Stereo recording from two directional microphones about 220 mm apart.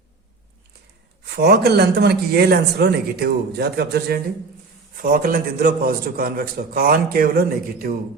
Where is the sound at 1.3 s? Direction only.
45° right (ahead or behind).